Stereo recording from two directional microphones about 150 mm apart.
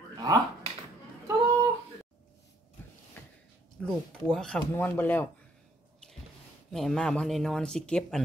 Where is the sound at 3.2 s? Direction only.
15° left (ahead or behind).